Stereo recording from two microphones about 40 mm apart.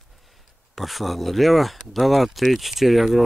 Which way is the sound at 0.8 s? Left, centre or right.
Centre.